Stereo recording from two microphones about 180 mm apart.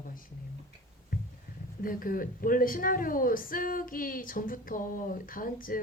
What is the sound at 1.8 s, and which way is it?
Speech, 50° left (ahead or behind).